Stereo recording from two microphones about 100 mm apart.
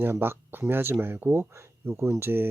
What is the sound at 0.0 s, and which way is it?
Speech, 20° right (ahead or behind).